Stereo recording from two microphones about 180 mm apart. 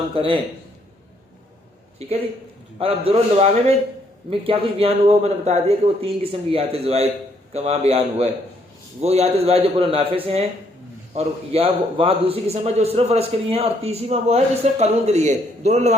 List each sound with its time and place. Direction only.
0.1 s a man's voice: 30° right (ahead or behind)
2.0 s a man's voice: 35° right (ahead or behind)